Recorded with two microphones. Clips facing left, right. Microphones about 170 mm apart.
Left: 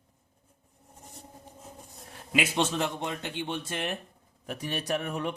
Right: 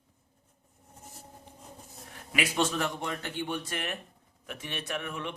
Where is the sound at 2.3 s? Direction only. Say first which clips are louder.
Left 2 dB; 25° left (ahead or behind); by 5.3 s 40° left (ahead or behind).